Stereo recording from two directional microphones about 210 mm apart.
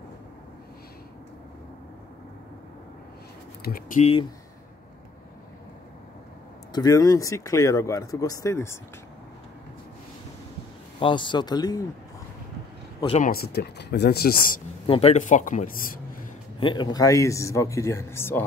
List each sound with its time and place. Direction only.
3.6 s speech: 45° left (ahead or behind)
4.0 s speech: 25° left (ahead or behind)
6.7 s speech: 20° left (ahead or behind)
11.0 s speech: 25° left (ahead or behind)
13.0 s speech: 30° left (ahead or behind)
13.3 s speech: 50° left (ahead or behind)
14.9 s a man's voice: 30° left (ahead or behind)
16.5 s speech: 25° left (ahead or behind)